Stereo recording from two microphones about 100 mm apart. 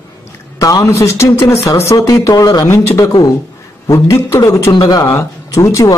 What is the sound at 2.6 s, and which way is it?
A man's voice, 30° left (ahead or behind).